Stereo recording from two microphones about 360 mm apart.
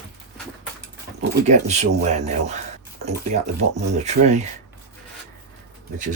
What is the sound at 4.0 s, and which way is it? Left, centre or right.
Speech, centre.